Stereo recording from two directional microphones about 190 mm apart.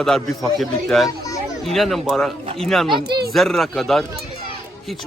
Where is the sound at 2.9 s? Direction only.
25° right (ahead or behind).